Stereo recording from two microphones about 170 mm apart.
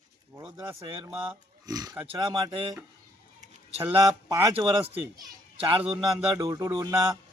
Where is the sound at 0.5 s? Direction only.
15° right (ahead or behind).